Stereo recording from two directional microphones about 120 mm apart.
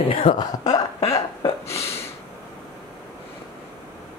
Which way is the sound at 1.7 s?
25° left (ahead or behind).